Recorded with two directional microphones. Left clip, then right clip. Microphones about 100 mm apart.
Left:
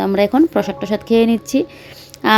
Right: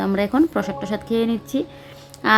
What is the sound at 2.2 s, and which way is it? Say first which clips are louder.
Quack: left 3 dB; 45° left (ahead or behind).